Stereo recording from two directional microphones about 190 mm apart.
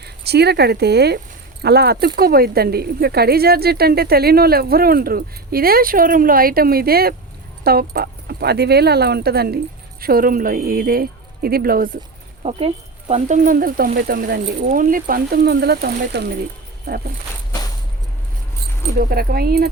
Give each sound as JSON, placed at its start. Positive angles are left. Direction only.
{"t": 0.0, "sound": "speech", "side_deg": -60}
{"t": 12.4, "sound": "speech", "side_deg": -30}
{"t": 18.9, "sound": "speech", "side_deg": -55}